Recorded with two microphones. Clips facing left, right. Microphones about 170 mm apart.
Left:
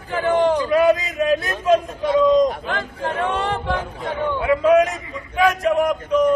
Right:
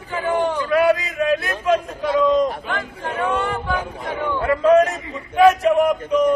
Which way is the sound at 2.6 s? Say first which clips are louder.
Left 2 dB; 35° left (ahead or behind).